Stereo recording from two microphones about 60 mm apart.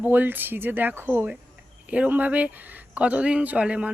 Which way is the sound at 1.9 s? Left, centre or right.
Right.